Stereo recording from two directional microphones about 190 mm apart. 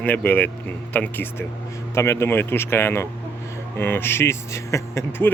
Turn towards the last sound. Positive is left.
turn(degrees=15)  # may be behind; listen again after turning